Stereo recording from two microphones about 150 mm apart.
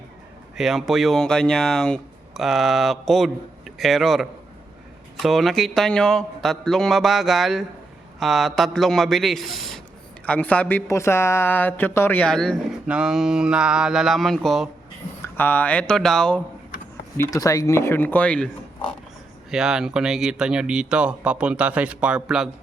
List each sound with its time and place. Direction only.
0.5 s speech: centre (ahead or behind)
15.2 s speech: 10° left (ahead or behind)
17.2 s speech: 20° left (ahead or behind)
19.5 s speech: 5° right (ahead or behind)